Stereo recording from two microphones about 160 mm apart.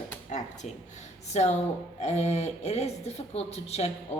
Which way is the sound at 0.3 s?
50° left (ahead or behind).